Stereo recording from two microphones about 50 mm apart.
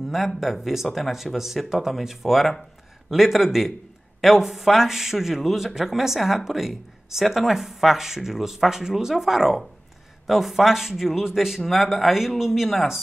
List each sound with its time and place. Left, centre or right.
0.4 s a man's voice: centre
0.8 s a man's voice: centre
1.1 s a man's voice: centre